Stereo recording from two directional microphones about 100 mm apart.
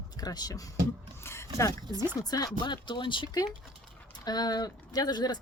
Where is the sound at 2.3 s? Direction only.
45° left (ahead or behind).